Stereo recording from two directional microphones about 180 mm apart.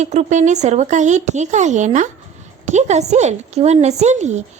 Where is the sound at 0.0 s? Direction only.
40° right (ahead or behind).